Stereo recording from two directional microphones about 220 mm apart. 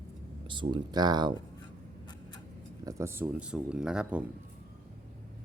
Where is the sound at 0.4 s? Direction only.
20° right (ahead or behind).